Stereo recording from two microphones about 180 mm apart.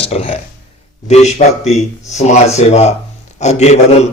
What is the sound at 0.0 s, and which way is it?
A man's voice, 35° left (ahead or behind).